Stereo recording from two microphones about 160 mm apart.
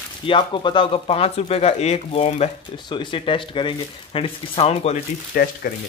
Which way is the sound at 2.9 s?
30° left (ahead or behind).